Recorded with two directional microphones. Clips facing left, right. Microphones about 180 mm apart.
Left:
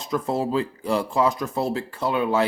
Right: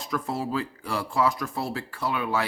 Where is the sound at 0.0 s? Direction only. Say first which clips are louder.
Left 5 dB; 20° left (ahead or behind).